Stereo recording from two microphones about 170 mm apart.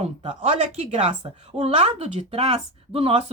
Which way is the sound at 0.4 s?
45° right (ahead or behind).